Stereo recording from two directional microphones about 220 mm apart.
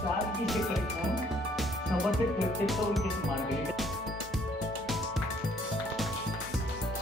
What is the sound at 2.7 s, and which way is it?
Speech, centre (ahead or behind).